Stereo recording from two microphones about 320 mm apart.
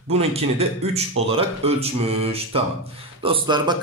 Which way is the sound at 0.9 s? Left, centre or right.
Centre.